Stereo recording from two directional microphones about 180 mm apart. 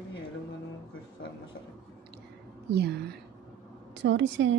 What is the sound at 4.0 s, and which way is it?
Speech, 90° right.